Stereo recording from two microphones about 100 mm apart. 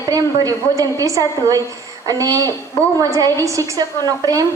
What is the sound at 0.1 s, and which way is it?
A woman's voice, 35° right (ahead or behind).